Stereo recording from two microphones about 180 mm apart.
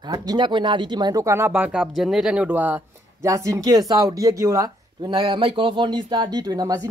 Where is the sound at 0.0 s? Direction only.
20° right (ahead or behind).